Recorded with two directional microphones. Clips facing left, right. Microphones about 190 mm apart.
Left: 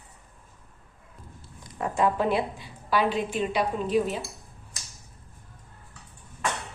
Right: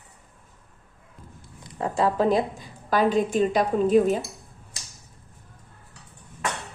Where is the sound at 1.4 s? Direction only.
25° right (ahead or behind); by 4.2 s 45° right (ahead or behind).